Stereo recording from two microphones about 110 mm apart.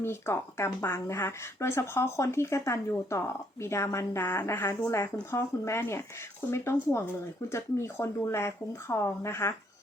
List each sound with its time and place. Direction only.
0.0 s speech: 20° left (ahead or behind)